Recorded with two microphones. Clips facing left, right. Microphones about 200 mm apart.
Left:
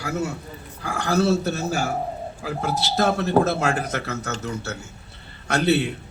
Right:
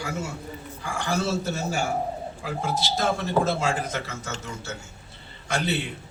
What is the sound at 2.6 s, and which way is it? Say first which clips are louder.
Speech: left 4 dB; 65° left (ahead or behind).